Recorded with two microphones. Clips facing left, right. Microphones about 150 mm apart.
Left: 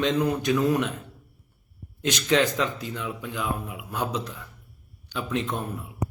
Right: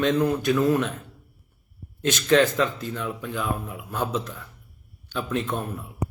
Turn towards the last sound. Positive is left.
turn(degrees=15)  # may be behind; listen again after turning